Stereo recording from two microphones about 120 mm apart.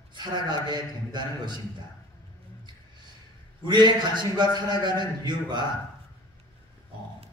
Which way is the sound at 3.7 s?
40° right (ahead or behind).